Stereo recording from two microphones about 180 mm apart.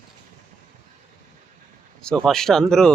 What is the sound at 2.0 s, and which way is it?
Speech, centre (ahead or behind).